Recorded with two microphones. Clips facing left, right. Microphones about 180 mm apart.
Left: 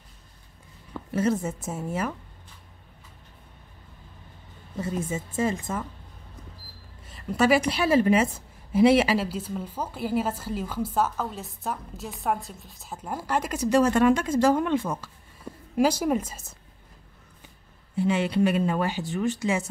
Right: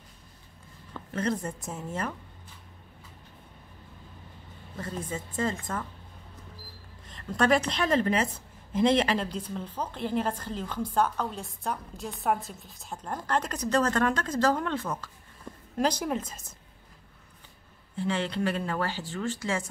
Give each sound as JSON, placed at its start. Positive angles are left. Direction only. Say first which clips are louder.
{"t": 0.9, "sound": "a woman's voice", "louder": "left 5 dB", "side_deg": 5}
{"t": 5.1, "sound": "a woman's voice", "louder": "left 2 dB", "side_deg": 10}
{"t": 7.1, "sound": "a woman's voice", "louder": "left 3 dB", "side_deg": 5}
{"t": 17.9, "sound": "a woman's voice", "louder": "left 6 dB", "side_deg": 10}